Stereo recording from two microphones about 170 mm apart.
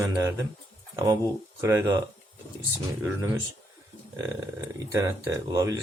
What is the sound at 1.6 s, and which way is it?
Speech, 15° right (ahead or behind).